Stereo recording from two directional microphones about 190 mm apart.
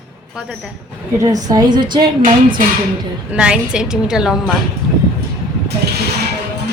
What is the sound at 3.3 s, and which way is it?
Speech, 5° right (ahead or behind).